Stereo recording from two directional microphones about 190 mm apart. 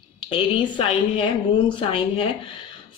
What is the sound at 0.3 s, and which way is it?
Speech, 25° left (ahead or behind).